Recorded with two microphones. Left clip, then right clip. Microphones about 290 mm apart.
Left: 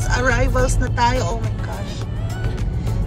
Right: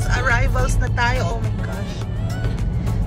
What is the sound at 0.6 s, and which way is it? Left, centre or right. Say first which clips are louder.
Speech: left 3 dB; centre.